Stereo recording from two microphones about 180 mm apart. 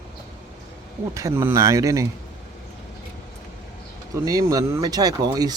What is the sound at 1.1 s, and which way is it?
Speech, 15° right (ahead or behind).